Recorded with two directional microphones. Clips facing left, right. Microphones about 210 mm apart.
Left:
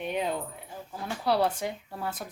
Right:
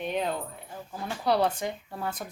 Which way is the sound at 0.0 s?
10° left (ahead or behind).